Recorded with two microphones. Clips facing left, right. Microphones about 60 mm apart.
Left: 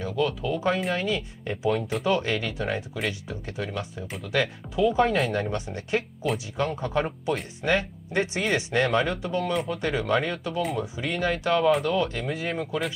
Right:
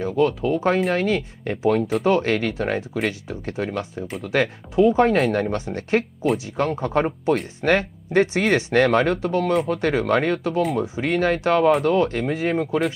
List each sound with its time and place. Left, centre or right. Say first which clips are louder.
0.0 s speech: right 6 dB; right
0.7 s speech: right 6 dB; right
1.6 s speech: right 6 dB; right
5.1 s speech: right 5 dB; right
5.4 s speech: right 5 dB; right